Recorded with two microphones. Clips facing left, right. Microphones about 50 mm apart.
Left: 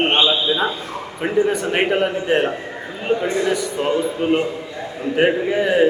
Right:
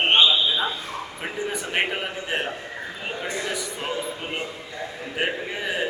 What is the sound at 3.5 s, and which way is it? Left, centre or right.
Speech, centre.